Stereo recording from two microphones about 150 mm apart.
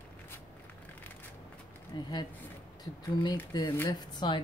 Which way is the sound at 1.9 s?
30° left (ahead or behind).